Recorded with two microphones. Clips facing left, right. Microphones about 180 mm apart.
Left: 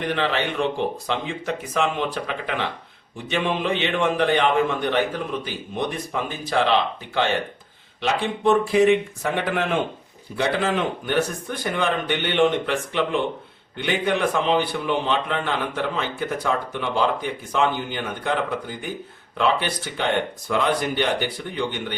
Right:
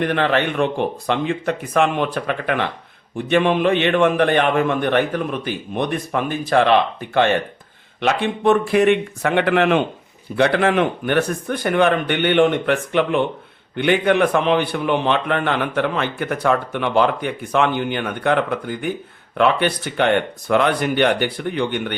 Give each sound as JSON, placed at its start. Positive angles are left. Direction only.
{"t": 0.0, "sound": "a man's voice", "side_deg": -55}